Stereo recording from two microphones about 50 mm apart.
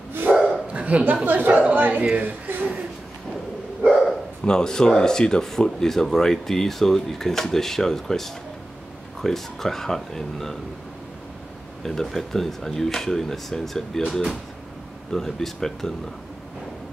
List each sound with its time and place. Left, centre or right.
0.1 s dog: right
0.4 s dog: right
1.2 s a woman's voice: right
4.5 s speech: centre
11.8 s speech: centre